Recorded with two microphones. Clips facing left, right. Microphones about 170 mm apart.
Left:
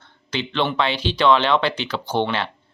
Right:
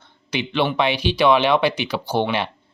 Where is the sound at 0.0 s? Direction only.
10° right (ahead or behind).